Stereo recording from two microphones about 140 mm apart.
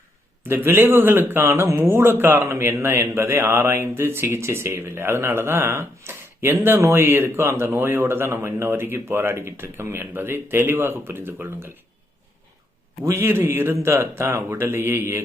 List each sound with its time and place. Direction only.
0.4 s speech: 15° right (ahead or behind)
13.1 s speech: 20° right (ahead or behind)